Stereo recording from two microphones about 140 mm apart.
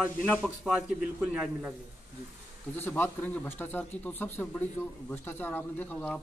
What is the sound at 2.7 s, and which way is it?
A man's voice, 15° left (ahead or behind).